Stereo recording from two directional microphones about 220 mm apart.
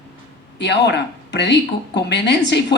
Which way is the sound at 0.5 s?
50° left (ahead or behind).